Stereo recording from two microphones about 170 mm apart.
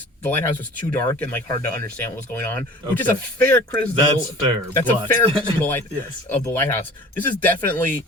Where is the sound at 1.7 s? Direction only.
60° right (ahead or behind).